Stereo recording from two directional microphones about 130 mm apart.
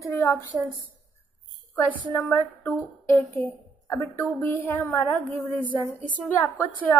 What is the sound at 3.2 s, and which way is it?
A woman's voice, 20° left (ahead or behind).